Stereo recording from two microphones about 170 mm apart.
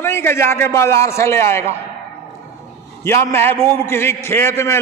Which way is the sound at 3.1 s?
15° left (ahead or behind).